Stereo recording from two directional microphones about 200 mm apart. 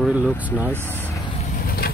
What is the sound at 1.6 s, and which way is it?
Vehicle, 50° left (ahead or behind).